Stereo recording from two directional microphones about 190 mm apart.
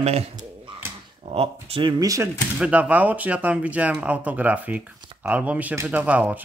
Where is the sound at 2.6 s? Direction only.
10° right (ahead or behind).